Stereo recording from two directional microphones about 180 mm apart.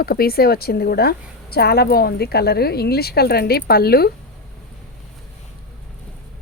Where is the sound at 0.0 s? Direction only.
55° left (ahead or behind).